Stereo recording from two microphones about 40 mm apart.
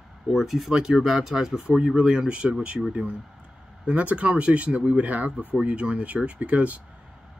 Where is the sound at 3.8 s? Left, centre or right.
Right.